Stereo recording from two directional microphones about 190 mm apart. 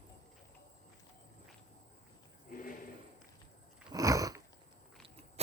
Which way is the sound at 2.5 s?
50° left (ahead or behind).